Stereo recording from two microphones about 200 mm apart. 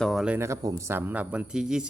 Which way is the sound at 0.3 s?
15° right (ahead or behind).